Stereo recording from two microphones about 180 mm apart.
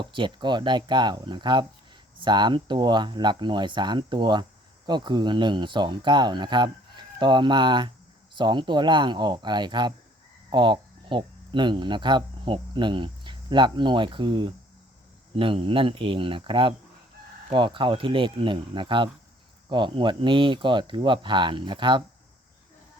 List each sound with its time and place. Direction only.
0.0 s speech: 25° right (ahead or behind)